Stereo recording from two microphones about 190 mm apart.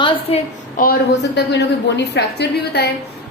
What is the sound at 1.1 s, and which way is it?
A woman's voice, 65° left (ahead or behind).